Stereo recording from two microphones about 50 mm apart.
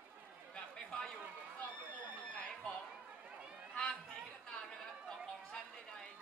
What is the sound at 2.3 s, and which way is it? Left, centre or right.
Speech, left.